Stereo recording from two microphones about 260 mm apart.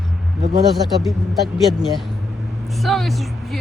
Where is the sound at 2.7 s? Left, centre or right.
Centre.